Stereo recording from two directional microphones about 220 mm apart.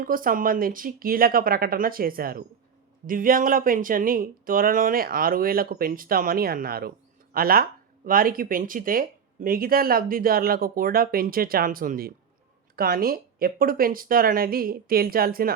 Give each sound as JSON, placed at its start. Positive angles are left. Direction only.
{"t": 0.0, "sound": "speech", "side_deg": -40}